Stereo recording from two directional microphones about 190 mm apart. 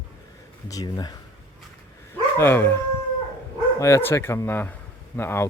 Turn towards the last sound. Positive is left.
turn(degrees=10)  # may be behind; listen again after turning